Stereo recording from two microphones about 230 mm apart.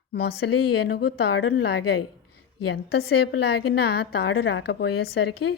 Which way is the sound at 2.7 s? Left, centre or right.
Left.